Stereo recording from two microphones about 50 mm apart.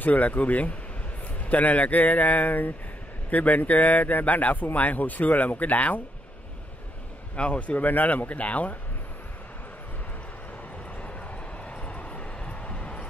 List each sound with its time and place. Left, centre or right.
0.0 s speech: left
7.3 s speech: left
11.0 s vehicle: left